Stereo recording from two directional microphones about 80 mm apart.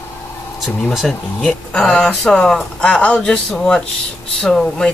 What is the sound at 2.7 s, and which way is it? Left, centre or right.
Speech, centre.